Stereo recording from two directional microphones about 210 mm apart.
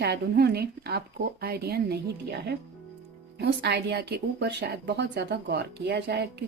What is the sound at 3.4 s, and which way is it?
A woman's voice, 55° right (ahead or behind).